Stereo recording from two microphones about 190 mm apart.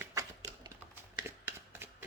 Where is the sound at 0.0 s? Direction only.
15° right (ahead or behind).